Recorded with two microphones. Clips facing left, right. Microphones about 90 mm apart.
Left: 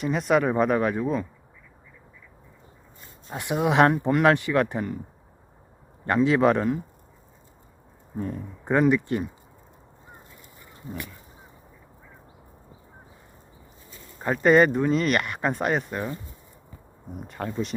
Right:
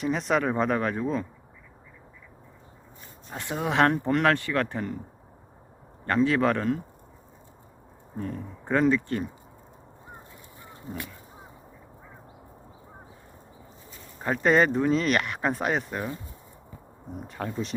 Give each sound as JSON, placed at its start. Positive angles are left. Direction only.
{"t": 0.0, "sound": "speech", "side_deg": 5}
{"t": 3.3, "sound": "speech", "side_deg": 15}
{"t": 6.1, "sound": "speech", "side_deg": 15}
{"t": 8.1, "sound": "speech", "side_deg": 15}
{"t": 14.2, "sound": "speech", "side_deg": 0}
{"t": 17.2, "sound": "speech", "side_deg": 0}